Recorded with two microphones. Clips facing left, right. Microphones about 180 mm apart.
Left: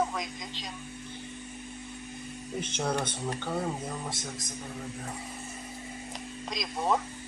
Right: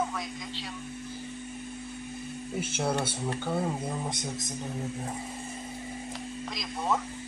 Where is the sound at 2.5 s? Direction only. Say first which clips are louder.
Right 1 dB; 5° right (ahead or behind).